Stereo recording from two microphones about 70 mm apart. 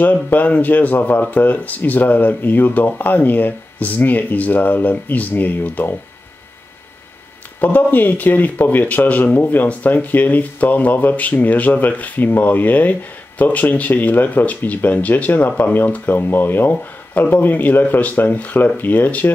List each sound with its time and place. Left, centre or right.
0.0 s speech: left
7.6 s speech: left